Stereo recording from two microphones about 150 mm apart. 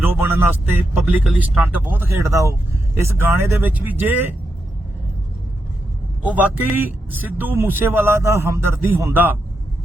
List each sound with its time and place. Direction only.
0.0 s speech: 15° right (ahead or behind)
6.2 s speech: 10° right (ahead or behind)